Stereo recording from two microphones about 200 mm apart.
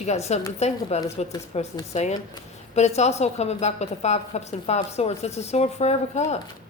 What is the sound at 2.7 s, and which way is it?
A woman's voice, 35° left (ahead or behind).